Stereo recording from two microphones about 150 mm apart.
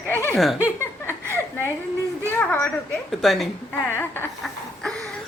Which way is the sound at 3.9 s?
15° left (ahead or behind).